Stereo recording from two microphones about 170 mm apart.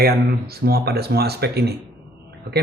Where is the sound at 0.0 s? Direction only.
65° right (ahead or behind).